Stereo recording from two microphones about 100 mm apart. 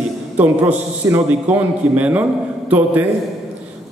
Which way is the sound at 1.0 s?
30° right (ahead or behind).